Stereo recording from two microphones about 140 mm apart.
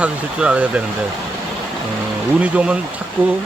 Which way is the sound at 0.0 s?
5° right (ahead or behind).